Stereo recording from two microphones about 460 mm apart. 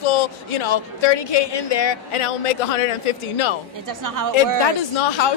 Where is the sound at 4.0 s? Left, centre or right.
Right.